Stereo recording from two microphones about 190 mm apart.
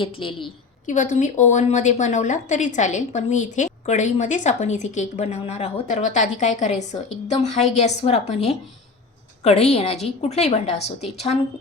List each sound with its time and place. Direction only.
0.0 s a woman's voice: 25° left (ahead or behind)
0.9 s a woman's voice: 40° left (ahead or behind)